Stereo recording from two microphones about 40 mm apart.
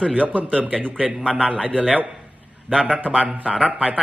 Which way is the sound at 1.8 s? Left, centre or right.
Right.